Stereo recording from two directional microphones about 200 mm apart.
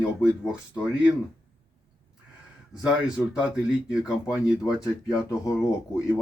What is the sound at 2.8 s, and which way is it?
Speech, 5° right (ahead or behind).